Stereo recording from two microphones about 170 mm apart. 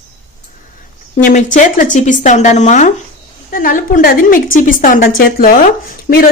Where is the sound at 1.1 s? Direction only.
50° left (ahead or behind).